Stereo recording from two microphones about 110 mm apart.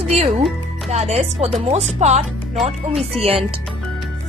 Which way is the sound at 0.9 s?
80° right.